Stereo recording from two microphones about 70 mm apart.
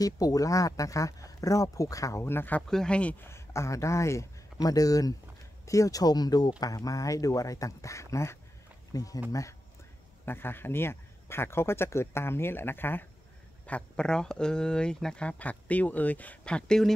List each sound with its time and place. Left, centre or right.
0.0 s speech: left
2.2 s speech: left
2.7 s speech: centre
3.2 s speech: left
4.6 s speech: left
6.6 s speech: left
8.9 s speech: left
10.2 s speech: left
13.7 s speech: centre